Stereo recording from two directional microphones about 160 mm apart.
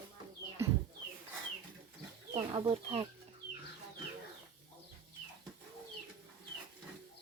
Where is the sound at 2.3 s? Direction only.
30° right (ahead or behind).